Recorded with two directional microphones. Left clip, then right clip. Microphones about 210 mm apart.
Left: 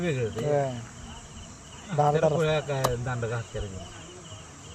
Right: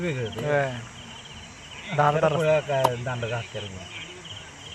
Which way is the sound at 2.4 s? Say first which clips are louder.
Right 5 dB; 25° left (ahead or behind).